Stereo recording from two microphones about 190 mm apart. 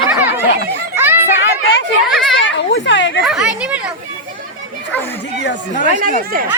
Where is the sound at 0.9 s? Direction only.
10° right (ahead or behind).